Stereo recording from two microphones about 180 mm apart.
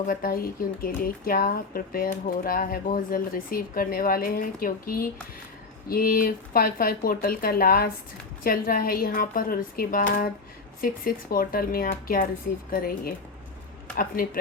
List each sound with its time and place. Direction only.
0.1 s speech: 55° left (ahead or behind)